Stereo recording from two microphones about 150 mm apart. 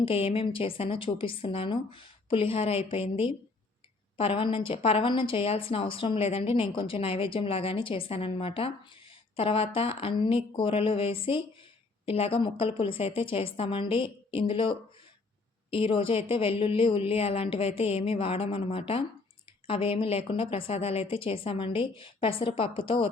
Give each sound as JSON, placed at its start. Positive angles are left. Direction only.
{"t": 0.0, "sound": "a woman's voice", "side_deg": 40}